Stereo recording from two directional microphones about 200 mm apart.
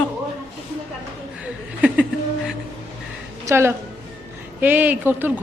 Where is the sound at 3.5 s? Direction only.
10° right (ahead or behind).